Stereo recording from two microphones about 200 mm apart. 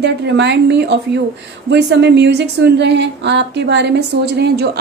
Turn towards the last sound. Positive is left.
turn(degrees=-55)  # may be behind; listen again after turning